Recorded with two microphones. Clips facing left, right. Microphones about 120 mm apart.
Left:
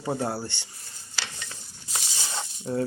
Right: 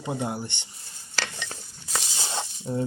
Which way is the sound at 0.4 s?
20° right (ahead or behind).